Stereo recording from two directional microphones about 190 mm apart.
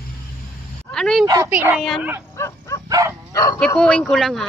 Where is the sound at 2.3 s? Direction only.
15° left (ahead or behind).